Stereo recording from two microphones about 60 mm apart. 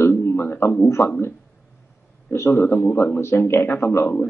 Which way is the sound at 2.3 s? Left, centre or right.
Left.